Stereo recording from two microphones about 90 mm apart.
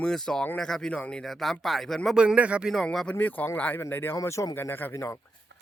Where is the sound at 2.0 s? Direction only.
10° right (ahead or behind).